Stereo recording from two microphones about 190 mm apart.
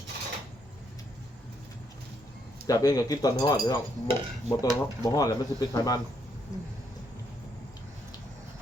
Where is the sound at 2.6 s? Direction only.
20° left (ahead or behind).